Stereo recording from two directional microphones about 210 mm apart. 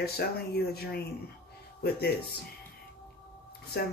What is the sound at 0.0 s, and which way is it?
Speech, 50° left (ahead or behind).